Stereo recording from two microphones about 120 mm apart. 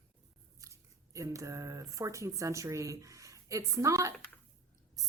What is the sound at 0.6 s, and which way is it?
A woman's voice, 25° right (ahead or behind).